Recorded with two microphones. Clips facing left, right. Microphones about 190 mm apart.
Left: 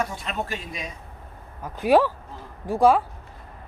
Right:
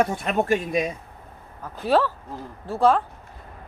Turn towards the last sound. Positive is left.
turn(degrees=10)  # may be behind; listen again after turning